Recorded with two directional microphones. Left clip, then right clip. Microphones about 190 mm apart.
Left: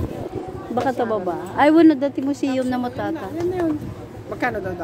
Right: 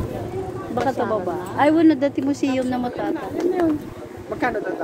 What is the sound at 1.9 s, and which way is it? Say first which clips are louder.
Speech: right 1 dB; 20° left (ahead or behind).